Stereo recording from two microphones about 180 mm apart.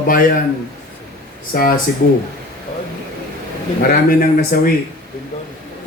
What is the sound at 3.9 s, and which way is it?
Speech, 55° left (ahead or behind).